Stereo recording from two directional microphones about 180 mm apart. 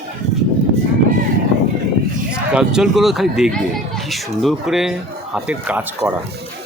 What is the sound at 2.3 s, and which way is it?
A man's voice, 5° right (ahead or behind).